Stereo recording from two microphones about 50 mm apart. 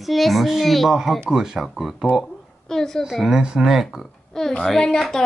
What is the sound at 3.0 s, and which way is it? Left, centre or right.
Speech, centre.